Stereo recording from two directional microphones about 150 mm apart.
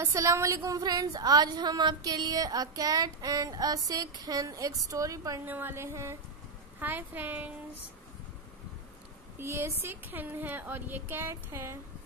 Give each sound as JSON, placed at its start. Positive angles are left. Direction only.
{"t": 0.0, "sound": "a woman's voice", "side_deg": -20}
{"t": 9.4, "sound": "speech", "side_deg": -15}